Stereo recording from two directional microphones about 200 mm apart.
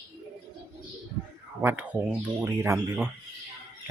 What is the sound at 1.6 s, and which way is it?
Speech, 5° right (ahead or behind).